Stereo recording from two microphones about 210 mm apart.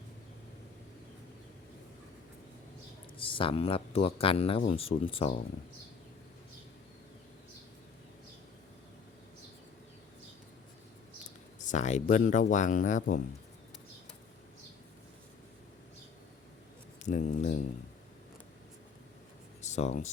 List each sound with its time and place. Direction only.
3.2 s speech: 25° left (ahead or behind)
11.6 s speech: 35° left (ahead or behind)
17.0 s speech: 35° left (ahead or behind)
19.6 s speech: 35° left (ahead or behind)